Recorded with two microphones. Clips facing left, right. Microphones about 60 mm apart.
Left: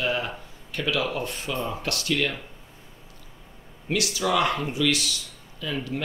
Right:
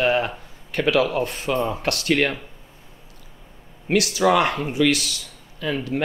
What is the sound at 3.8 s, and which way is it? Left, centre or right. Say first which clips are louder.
Speech: right 7 dB; right.